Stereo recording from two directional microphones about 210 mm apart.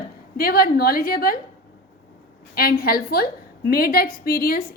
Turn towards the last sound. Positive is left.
turn(degrees=45)  # may be behind; listen again after turning